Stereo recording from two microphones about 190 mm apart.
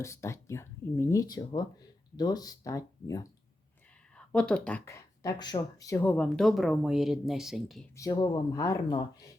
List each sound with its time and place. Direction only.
0.0 s speech: 15° left (ahead or behind)
4.3 s speech: 5° left (ahead or behind)
5.2 s speech: 20° left (ahead or behind); by 7.9 s centre (ahead or behind)
7.9 s speech: 20° left (ahead or behind)